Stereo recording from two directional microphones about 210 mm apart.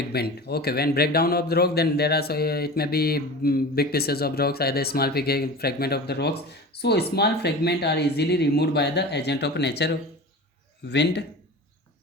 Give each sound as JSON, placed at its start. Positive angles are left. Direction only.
{"t": 0.1, "sound": "a man's voice", "side_deg": 50}